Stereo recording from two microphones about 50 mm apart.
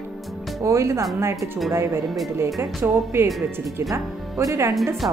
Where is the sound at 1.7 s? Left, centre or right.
Right.